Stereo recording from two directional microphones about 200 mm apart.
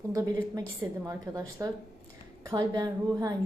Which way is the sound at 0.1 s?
15° right (ahead or behind).